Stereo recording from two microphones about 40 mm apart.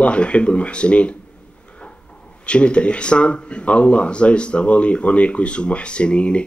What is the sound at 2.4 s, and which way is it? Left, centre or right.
Speech, left.